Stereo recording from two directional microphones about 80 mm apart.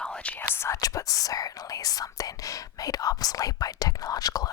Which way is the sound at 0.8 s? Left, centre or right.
Left.